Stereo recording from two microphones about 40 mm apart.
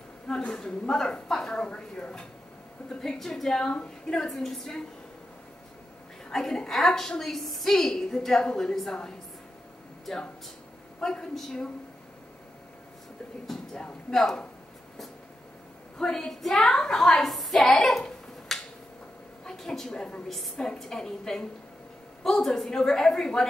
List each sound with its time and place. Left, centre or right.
0.5 s a woman's voice: centre
3.7 s a woman's voice: left
4.2 s a woman's voice: centre
6.3 s a woman's voice: centre
10.1 s a woman's voice: centre
16.0 s a woman's voice: centre
18.5 s a sound: centre
19.4 s a woman's voice: centre
20.2 s a woman's voice: centre